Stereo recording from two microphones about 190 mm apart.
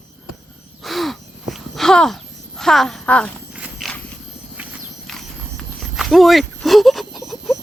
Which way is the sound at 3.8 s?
Centre (ahead or behind).